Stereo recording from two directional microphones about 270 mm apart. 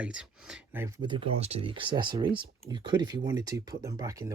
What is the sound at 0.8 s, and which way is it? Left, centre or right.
Speech, centre.